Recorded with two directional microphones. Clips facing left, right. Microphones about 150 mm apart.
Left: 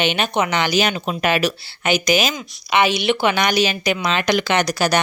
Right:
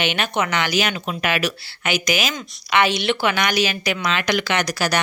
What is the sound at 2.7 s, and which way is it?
A woman's voice, 15° left (ahead or behind).